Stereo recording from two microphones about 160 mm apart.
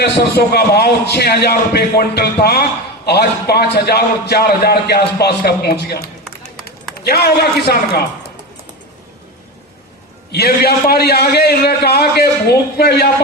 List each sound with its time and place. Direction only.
0.0 s a man's voice: 85° left
10.3 s a man's voice: 80° left